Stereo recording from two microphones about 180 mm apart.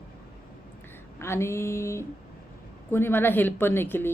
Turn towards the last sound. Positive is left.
turn(degrees=10)  # may be behind; listen again after turning